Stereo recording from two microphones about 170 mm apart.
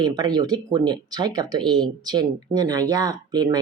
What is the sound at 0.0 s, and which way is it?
Speech, 25° right (ahead or behind).